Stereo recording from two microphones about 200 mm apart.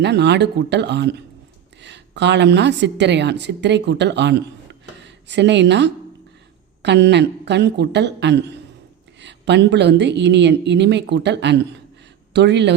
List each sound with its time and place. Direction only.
0.0 s a woman's voice: 55° right (ahead or behind)